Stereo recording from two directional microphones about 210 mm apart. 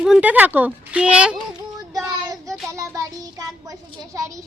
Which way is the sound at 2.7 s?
15° right (ahead or behind).